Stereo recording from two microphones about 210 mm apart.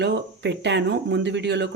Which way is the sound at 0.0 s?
55° right (ahead or behind).